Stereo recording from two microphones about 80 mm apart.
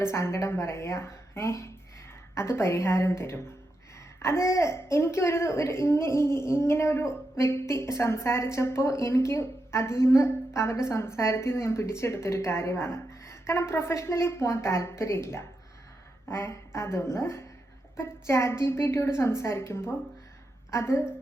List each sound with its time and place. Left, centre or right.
0.0 s a woman's voice: left